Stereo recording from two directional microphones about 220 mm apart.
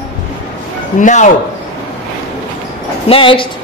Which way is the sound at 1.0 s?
35° left (ahead or behind).